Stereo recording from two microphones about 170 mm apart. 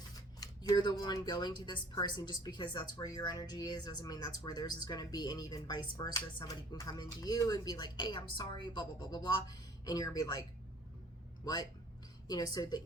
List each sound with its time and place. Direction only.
0.3 s speech: 20° left (ahead or behind)
11.4 s speech: 20° left (ahead or behind)